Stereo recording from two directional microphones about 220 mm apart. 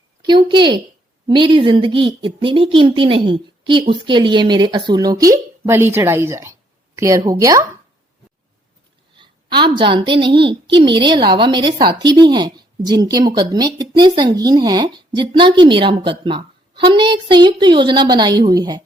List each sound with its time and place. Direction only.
0.2 s a woman's voice: 20° right (ahead or behind)
9.1 s a woman's voice: 20° right (ahead or behind)